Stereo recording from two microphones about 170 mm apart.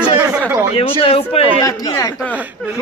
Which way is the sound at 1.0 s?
35° left (ahead or behind).